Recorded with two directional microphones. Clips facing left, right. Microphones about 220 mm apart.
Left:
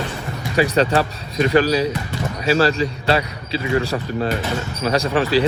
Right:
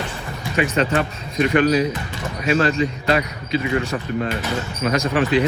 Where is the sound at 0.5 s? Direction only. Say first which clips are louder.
Left 3 dB; 35° left (ahead or behind).